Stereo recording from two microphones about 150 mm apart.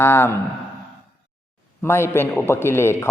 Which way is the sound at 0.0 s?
15° left (ahead or behind).